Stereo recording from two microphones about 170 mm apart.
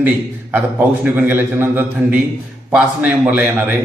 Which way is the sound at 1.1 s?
10° right (ahead or behind).